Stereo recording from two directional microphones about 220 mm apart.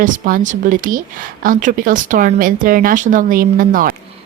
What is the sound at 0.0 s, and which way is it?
Speech, 40° right (ahead or behind).